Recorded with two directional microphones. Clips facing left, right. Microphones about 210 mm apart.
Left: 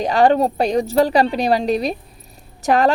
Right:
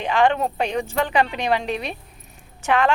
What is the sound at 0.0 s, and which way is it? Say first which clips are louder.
A woman's voice: left 5 dB; 40° left (ahead or behind).